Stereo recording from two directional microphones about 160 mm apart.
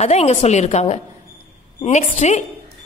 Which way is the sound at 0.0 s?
40° left (ahead or behind).